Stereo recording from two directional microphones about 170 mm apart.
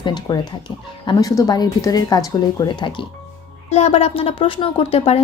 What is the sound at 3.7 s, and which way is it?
Speech, 35° left (ahead or behind).